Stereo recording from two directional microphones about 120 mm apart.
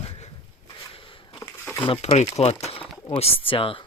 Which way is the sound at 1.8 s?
50° left (ahead or behind).